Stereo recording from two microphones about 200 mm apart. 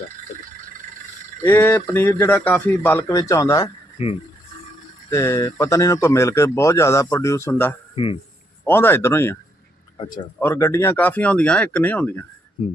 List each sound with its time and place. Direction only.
1.4 s speech: 10° left (ahead or behind)
3.9 s speech: 30° left (ahead or behind)
5.1 s speech: 15° left (ahead or behind)
7.9 s a man's voice: 25° left (ahead or behind)
8.6 s speech: 10° left (ahead or behind)
10.4 s speech: 15° left (ahead or behind)